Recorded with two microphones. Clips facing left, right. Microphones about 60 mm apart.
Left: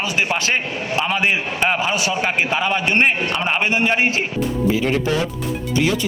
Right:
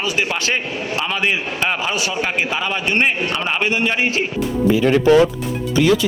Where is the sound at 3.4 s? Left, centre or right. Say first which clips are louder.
Left 1 dB; left.